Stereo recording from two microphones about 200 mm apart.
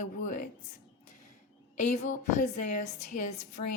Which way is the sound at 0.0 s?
40° left (ahead or behind).